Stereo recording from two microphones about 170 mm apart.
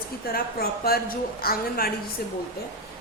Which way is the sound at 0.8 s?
65° left (ahead or behind).